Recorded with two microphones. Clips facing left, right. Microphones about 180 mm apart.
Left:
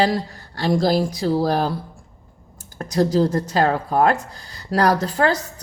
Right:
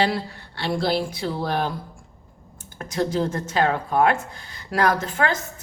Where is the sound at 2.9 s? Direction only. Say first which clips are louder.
Left 6 dB; 40° left (ahead or behind).